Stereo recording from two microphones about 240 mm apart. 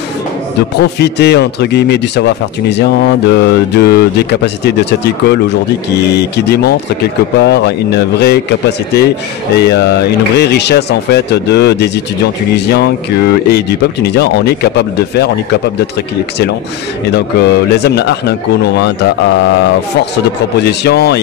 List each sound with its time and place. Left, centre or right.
0.6 s speech: left
17.1 s speech: left